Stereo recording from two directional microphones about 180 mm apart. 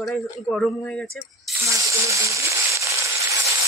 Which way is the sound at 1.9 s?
15° right (ahead or behind).